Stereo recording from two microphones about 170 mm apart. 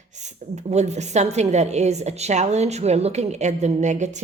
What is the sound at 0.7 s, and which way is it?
A woman's voice, 40° right (ahead or behind).